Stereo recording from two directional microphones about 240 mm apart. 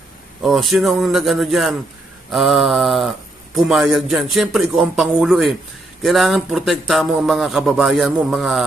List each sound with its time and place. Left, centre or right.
0.4 s speech: centre